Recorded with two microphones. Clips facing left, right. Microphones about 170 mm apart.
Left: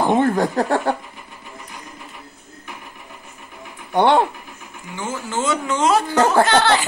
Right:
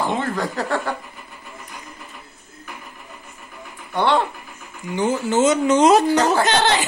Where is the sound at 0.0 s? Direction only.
50° left (ahead or behind).